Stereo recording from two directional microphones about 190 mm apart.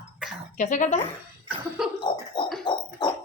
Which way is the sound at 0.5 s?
40° left (ahead or behind).